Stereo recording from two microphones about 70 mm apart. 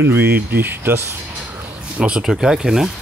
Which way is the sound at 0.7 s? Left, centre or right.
Right.